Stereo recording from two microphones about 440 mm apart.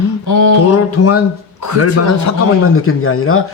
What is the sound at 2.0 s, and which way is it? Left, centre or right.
A man's voice, left.